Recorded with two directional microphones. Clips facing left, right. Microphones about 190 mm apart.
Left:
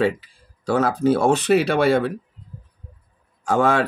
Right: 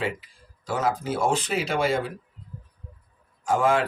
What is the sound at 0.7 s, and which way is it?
Speech, 65° left (ahead or behind).